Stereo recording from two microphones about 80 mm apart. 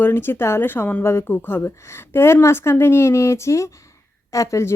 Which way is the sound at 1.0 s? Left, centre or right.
Left.